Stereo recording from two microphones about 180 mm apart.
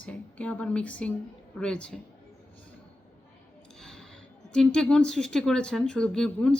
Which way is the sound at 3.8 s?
5° left (ahead or behind).